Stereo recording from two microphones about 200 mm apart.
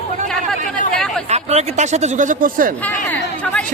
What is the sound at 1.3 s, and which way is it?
Speech, 35° right (ahead or behind).